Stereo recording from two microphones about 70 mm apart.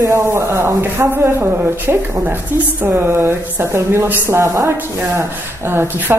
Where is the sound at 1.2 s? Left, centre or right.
Right.